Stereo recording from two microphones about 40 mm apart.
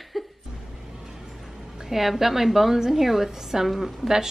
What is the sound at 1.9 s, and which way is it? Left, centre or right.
Speech, centre.